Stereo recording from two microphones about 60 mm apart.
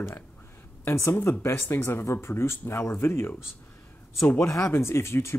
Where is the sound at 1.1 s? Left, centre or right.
Left.